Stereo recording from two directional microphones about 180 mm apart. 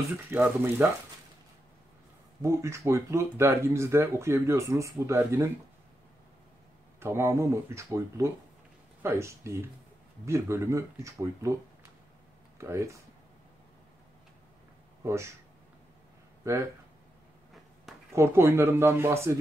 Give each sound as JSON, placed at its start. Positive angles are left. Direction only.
{"t": 0.3, "sound": "speech", "side_deg": -10}
{"t": 2.4, "sound": "speech", "side_deg": -15}
{"t": 7.0, "sound": "speech", "side_deg": -15}
{"t": 15.0, "sound": "speech", "side_deg": -15}
{"t": 16.5, "sound": "speech", "side_deg": -15}
{"t": 18.1, "sound": "speech", "side_deg": -15}